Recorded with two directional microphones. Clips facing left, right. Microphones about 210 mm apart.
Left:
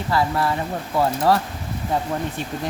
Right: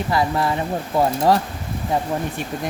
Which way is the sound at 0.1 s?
15° right (ahead or behind).